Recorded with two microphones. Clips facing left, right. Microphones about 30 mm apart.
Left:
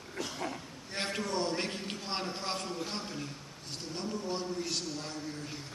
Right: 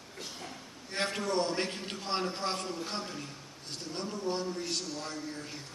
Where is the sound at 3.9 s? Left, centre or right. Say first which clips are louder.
Right 2 dB; centre.